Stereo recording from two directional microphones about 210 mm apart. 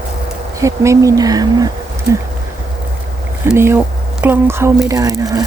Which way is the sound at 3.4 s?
10° right (ahead or behind).